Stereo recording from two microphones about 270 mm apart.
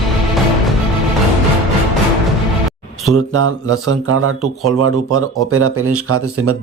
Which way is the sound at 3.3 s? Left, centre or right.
Right.